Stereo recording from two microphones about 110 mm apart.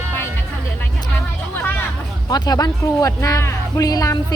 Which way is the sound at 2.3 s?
35° left (ahead or behind).